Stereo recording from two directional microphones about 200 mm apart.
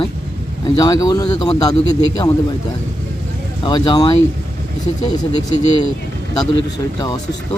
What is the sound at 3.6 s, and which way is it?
Speech, 20° left (ahead or behind).